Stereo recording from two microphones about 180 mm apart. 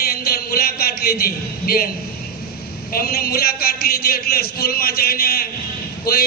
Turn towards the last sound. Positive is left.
turn(degrees=55)  # may be behind; listen again after turning